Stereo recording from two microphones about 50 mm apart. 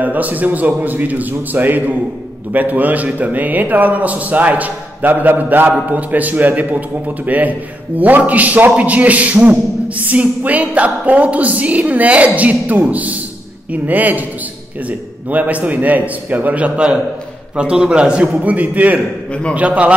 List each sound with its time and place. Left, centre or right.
0.0 s a man's voice: right